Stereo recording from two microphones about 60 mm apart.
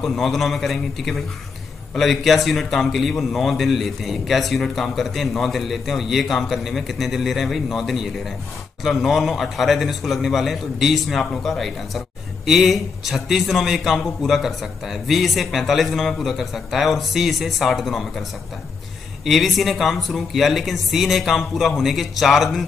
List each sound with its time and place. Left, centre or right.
0.0 s a man's voice: centre
19.2 s a man's voice: centre